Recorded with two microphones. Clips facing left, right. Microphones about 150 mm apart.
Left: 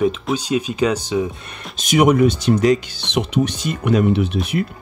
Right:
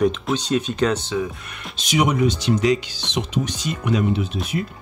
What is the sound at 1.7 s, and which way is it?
Speech, 50° left (ahead or behind).